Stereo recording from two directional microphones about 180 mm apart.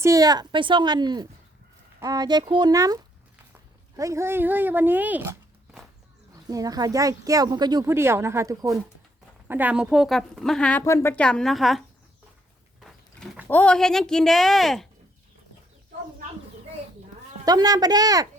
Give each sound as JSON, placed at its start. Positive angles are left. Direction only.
{"t": 0.0, "sound": "speech", "side_deg": -20}
{"t": 6.5, "sound": "speech", "side_deg": -20}
{"t": 12.8, "sound": "a sound", "side_deg": 0}
{"t": 13.5, "sound": "speech", "side_deg": 5}
{"t": 17.4, "sound": "speech", "side_deg": -20}